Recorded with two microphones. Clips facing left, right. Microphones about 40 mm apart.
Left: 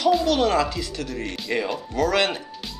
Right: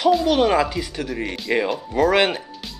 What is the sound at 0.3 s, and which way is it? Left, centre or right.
Speech, centre.